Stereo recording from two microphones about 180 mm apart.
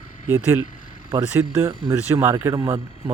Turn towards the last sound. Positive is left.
turn(degrees=-20)  # may be behind; listen again after turning